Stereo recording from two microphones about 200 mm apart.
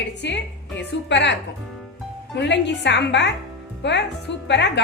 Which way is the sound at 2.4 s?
60° left (ahead or behind).